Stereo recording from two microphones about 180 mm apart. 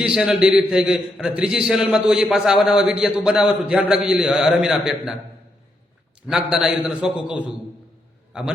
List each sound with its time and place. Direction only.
0.0 s a man's voice: 5° right (ahead or behind)
6.2 s a man's voice: 5° right (ahead or behind)